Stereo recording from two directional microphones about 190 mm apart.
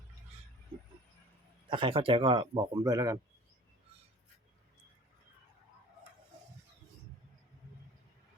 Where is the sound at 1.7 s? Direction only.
25° right (ahead or behind).